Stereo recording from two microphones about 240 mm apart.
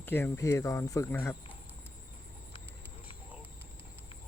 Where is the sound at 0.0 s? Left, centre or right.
Centre.